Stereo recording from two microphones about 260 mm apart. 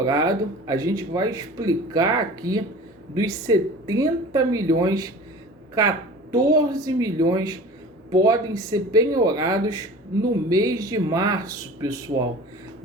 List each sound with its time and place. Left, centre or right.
0.0 s speech: centre
6.3 s speech: centre